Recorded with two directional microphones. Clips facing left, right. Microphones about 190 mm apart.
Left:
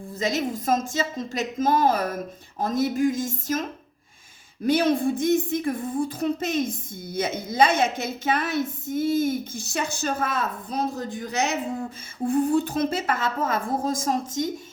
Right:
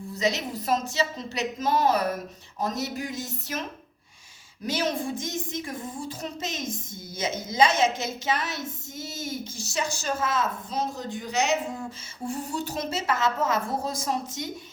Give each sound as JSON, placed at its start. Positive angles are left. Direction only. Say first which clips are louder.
{"t": 0.1, "sound": "a woman's voice", "louder": "left 2 dB", "side_deg": 50}
{"t": 4.6, "sound": "speech", "louder": "left 7 dB", "side_deg": 55}
{"t": 12.2, "sound": "a woman's voice", "louder": "left 10 dB", "side_deg": 55}